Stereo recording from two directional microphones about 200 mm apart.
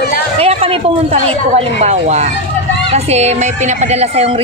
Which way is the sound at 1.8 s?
35° right (ahead or behind).